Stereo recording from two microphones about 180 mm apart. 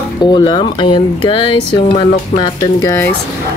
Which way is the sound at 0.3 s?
25° left (ahead or behind).